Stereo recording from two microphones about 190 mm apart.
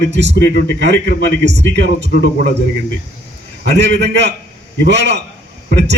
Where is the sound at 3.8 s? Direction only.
65° right (ahead or behind).